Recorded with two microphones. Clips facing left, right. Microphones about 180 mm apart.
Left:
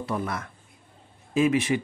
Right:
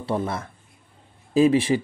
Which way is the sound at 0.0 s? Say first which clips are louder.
Right 4 dB; 30° right (ahead or behind).